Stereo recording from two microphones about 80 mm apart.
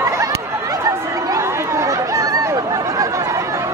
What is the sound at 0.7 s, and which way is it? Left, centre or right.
Chatter, right.